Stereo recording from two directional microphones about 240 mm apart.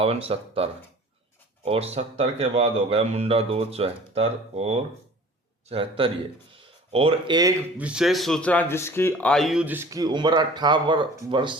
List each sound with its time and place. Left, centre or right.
0.0 s speech: right
6.5 s a sound: right
7.8 s speech: centre